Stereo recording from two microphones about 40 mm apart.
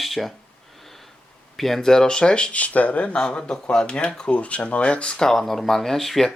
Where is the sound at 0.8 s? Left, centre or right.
Centre.